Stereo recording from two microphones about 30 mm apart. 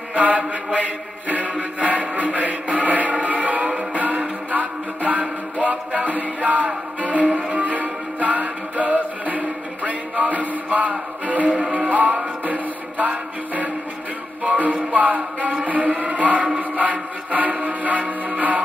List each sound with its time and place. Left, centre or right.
0.2 s mantra: right
1.8 s chant: right
4.5 s music: right
15.6 s chant: right